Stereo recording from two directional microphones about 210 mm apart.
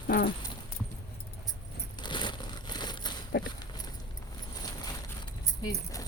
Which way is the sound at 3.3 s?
50° left (ahead or behind).